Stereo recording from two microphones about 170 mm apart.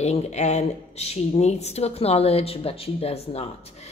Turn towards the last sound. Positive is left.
turn(degrees=35)  # may be behind; listen again after turning